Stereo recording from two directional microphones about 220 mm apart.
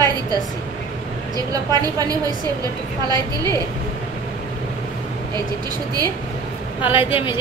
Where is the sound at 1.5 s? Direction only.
15° right (ahead or behind).